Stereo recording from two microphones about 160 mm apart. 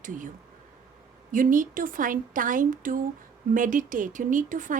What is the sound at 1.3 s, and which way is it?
Speech, 55° right (ahead or behind).